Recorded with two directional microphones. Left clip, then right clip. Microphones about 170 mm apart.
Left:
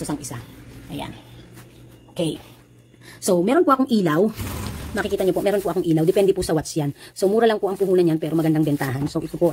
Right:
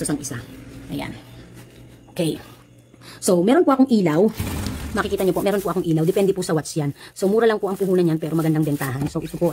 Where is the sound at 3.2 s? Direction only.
5° right (ahead or behind).